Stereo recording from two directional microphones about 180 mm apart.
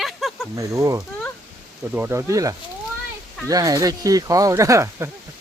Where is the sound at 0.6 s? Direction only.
15° right (ahead or behind).